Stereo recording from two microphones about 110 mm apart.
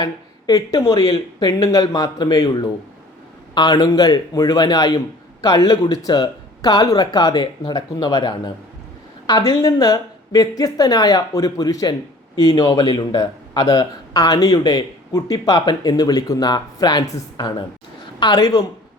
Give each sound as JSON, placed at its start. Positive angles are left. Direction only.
{"t": 0.0, "sound": "speech", "side_deg": 35}
{"t": 9.6, "sound": "speech", "side_deg": 35}